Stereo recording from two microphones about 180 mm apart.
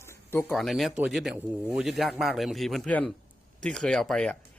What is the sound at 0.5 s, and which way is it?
A man's voice, centre (ahead or behind).